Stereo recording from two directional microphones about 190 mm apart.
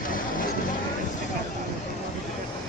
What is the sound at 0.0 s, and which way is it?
Vehicle, 45° left (ahead or behind).